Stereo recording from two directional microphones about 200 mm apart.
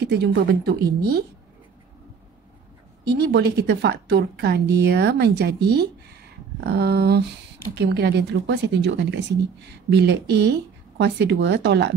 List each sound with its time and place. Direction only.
0.0 s a woman's voice: 55° right (ahead or behind)
3.1 s a woman's voice: 55° right (ahead or behind)